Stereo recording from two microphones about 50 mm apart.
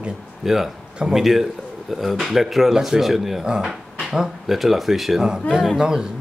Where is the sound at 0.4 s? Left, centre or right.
Centre.